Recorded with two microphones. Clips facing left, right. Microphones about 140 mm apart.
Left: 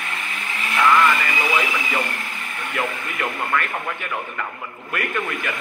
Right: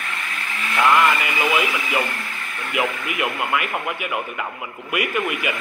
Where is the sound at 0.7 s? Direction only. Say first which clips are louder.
Even; 20° right (ahead or behind).